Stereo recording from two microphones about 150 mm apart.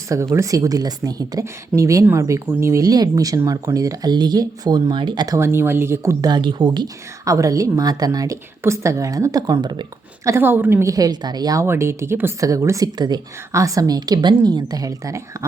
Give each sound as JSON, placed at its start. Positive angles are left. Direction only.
{"t": 0.1, "sound": "speech", "side_deg": -20}
{"t": 10.2, "sound": "speech", "side_deg": -15}